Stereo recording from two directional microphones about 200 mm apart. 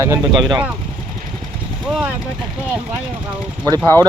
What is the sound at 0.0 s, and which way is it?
Speech, 15° right (ahead or behind).